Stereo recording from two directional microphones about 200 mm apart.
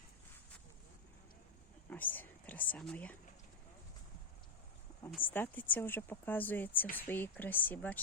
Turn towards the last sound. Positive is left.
turn(degrees=10)  # may be behind; listen again after turning